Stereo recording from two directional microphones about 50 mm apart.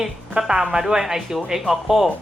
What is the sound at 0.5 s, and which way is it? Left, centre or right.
Speech, right.